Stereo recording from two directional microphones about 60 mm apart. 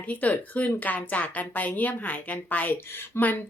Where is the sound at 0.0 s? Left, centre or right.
Left.